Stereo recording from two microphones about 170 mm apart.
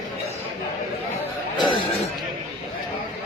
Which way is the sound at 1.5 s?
25° left (ahead or behind).